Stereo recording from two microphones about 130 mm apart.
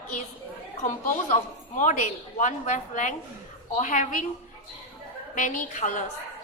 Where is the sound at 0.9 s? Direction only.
80° left.